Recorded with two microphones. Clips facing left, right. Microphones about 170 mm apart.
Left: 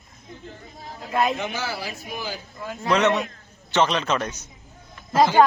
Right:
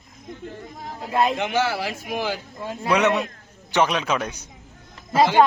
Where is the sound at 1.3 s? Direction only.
80° right.